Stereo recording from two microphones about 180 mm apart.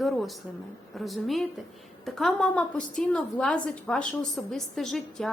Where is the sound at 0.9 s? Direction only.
Centre (ahead or behind).